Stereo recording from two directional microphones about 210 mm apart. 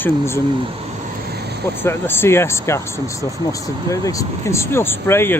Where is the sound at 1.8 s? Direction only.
10° left (ahead or behind).